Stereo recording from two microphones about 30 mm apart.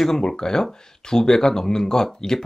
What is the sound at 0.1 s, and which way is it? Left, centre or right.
Speech, centre.